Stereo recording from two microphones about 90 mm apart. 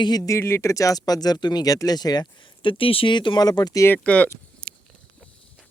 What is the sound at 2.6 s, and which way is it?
Speech, 90° left.